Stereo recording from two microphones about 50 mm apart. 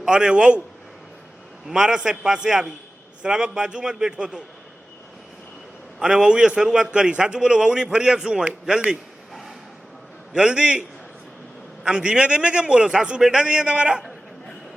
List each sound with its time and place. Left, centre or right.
0.0 s a man's voice: centre
1.6 s a man's voice: centre
6.0 s a man's voice: centre
10.3 s a man's voice: centre
11.9 s a man's voice: centre